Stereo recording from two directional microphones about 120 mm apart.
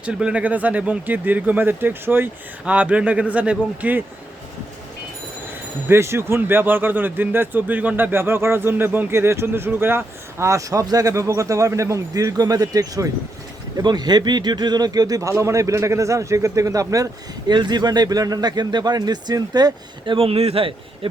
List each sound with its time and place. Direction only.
0.0 s speech: 10° right (ahead or behind)
5.9 s a man's voice: 20° right (ahead or behind)
20.1 s a man's voice: 55° right (ahead or behind)